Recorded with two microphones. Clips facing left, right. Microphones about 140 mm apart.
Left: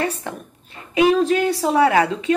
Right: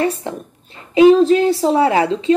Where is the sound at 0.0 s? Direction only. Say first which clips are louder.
Right 5 dB; 25° right (ahead or behind).